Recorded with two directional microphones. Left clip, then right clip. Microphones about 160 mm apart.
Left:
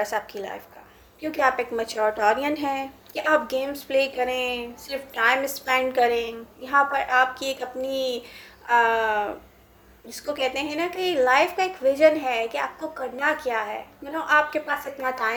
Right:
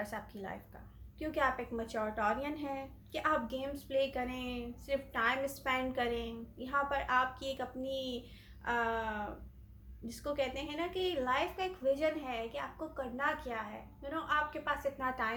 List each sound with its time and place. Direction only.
0.0 s a woman's voice: 30° left (ahead or behind)